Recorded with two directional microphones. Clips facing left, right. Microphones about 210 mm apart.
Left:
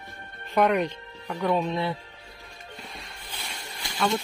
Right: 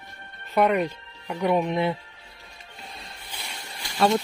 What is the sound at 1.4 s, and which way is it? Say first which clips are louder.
Speech: right 3 dB; 15° right (ahead or behind).